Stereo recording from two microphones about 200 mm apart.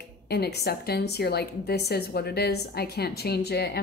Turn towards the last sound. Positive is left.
turn(degrees=55)  # may be behind; listen again after turning